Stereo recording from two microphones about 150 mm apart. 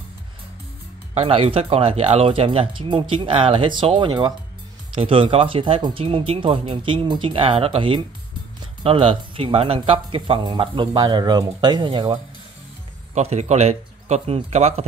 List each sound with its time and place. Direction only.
1.1 s speech: 40° right (ahead or behind)
13.1 s speech: 50° right (ahead or behind)